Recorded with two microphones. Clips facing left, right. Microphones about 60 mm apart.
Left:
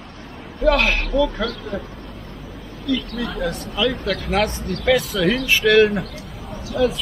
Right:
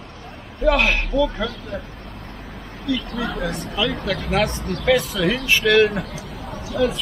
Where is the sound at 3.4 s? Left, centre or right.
Right.